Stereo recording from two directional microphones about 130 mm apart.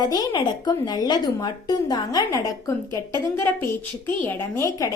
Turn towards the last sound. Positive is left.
turn(degrees=20)  # may be behind; listen again after turning